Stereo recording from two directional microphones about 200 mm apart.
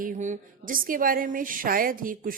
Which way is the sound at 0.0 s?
40° right (ahead or behind).